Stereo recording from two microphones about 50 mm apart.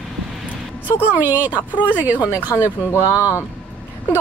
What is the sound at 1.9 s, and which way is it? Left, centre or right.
Speech, right.